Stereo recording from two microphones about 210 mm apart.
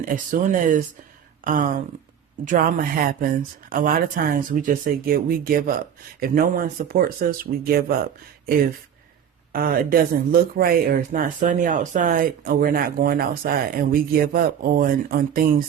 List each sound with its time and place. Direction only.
0.0 s speech: 40° right (ahead or behind)